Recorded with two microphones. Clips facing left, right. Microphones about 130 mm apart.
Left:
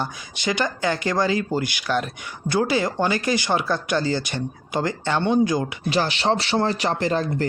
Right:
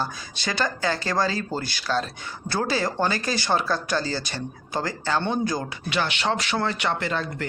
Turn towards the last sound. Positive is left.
turn(degrees=35)  # may be behind; listen again after turning